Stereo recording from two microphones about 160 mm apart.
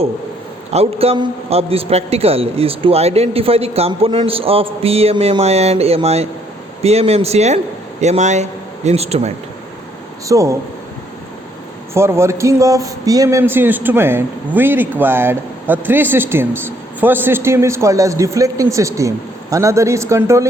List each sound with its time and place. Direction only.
0.7 s a man's voice: 40° right (ahead or behind)
10.2 s speech: 20° right (ahead or behind)
11.9 s speech: 15° right (ahead or behind)